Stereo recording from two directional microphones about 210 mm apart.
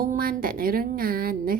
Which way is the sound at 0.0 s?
40° right (ahead or behind).